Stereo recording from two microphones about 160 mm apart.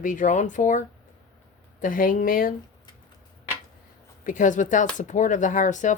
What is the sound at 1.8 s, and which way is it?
Speech, 60° left (ahead or behind).